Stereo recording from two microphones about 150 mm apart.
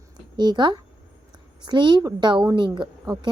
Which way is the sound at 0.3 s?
30° right (ahead or behind).